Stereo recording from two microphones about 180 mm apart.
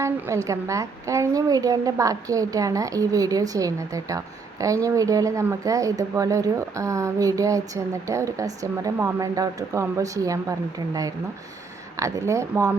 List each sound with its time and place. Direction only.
0.0 s a woman's voice: 15° right (ahead or behind)
11.9 s speech: 15° right (ahead or behind)